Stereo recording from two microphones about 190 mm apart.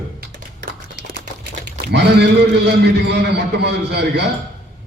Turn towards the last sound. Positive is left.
turn(degrees=-60)  # may be behind; listen again after turning